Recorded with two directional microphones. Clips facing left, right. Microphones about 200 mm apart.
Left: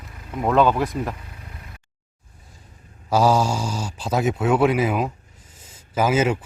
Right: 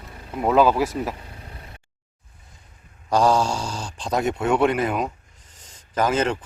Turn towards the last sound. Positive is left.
turn(degrees=5)  # may be behind; listen again after turning